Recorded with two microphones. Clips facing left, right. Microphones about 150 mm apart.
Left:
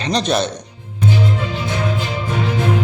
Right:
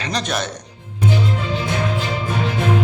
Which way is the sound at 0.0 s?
25° left (ahead or behind).